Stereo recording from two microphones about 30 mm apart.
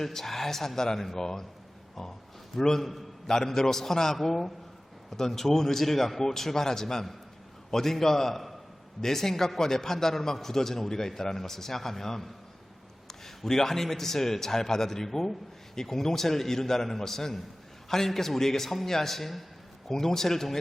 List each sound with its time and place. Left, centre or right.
0.0 s a man's voice: centre
2.5 s a man's voice: centre
19.9 s a man's voice: centre